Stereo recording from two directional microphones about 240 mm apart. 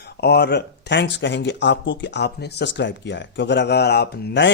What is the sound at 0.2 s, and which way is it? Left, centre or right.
Speech, left.